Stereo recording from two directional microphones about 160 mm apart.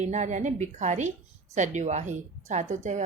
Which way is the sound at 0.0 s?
45° right (ahead or behind).